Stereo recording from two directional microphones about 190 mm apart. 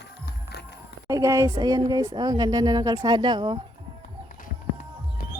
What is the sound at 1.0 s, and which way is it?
Speech, 15° right (ahead or behind).